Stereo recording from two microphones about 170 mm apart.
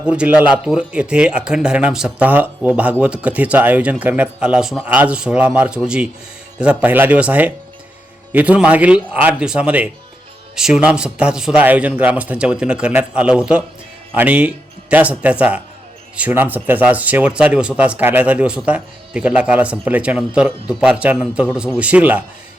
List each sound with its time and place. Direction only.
0.0 s speech: 5° right (ahead or behind)